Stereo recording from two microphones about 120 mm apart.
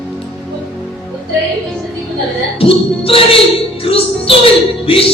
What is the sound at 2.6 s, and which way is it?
Music, 50° left (ahead or behind).